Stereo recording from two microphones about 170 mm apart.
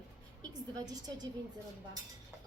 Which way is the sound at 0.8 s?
25° right (ahead or behind).